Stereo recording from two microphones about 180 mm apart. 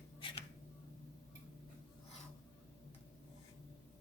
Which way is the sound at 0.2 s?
30° left (ahead or behind).